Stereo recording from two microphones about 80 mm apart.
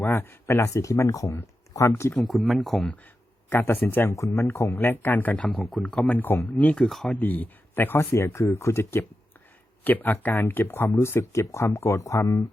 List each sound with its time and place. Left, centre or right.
0.0 s speech: left
2.1 s speech: centre
3.5 s speech: left
4.1 s speech: left
4.4 s speech: left
6.8 s speech: centre
7.2 s speech: left